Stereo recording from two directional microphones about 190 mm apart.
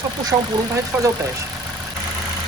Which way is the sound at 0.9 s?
10° right (ahead or behind).